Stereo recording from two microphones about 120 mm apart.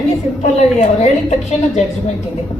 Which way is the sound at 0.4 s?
70° left (ahead or behind).